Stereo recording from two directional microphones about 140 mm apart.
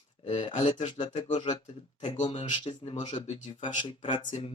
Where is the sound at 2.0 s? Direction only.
50° left (ahead or behind).